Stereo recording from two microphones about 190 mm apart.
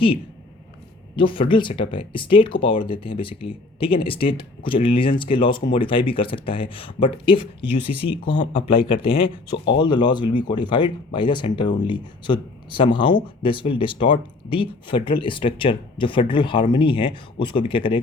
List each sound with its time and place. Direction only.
1.1 s speech: 25° left (ahead or behind)